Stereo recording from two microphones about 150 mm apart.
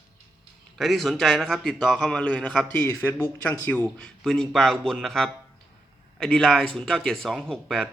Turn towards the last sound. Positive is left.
turn(degrees=5)  # may be behind; listen again after turning